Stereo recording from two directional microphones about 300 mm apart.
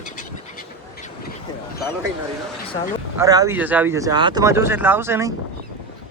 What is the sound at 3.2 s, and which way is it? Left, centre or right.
Speech, centre.